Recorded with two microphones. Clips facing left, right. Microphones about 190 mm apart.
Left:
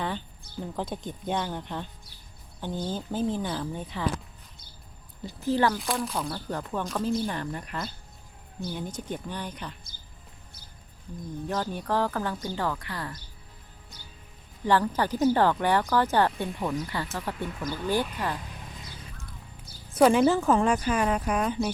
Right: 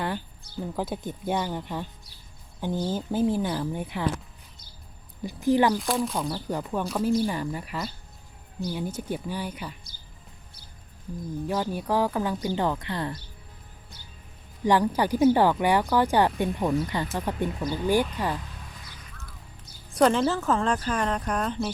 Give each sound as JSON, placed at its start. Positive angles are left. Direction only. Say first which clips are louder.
{"t": 0.8, "sound": "speech", "louder": "right 3 dB", "side_deg": -5}
{"t": 5.2, "sound": "speech", "louder": "right 3 dB", "side_deg": -15}
{"t": 5.7, "sound": "speech", "louder": "right 3 dB", "side_deg": 0}
{"t": 11.4, "sound": "speech", "louder": "right 2 dB", "side_deg": -10}
{"t": 14.6, "sound": "speech", "louder": "right 2 dB", "side_deg": -15}
{"t": 19.9, "sound": "speech", "louder": "left 2 dB", "side_deg": 5}